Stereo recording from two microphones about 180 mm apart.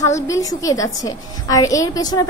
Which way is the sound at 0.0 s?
15° left (ahead or behind).